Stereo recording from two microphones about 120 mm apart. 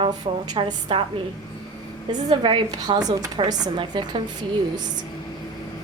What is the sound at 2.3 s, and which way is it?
A woman's voice, 45° right (ahead or behind).